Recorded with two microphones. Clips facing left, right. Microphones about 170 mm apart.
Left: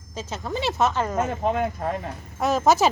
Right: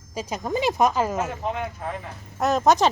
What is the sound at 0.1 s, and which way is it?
Speech, 10° right (ahead or behind).